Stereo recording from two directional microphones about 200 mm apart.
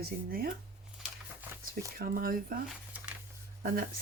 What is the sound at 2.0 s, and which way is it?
Speech, 45° right (ahead or behind).